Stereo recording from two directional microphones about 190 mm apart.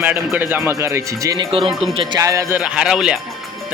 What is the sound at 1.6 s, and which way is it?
Speech, centre (ahead or behind).